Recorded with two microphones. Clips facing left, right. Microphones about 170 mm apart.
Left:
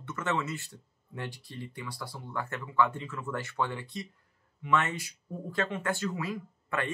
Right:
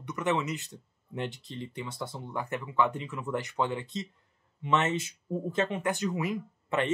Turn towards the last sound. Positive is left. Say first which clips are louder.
# right 4 dB
turn(degrees=-20)  # may be behind; listen again after turning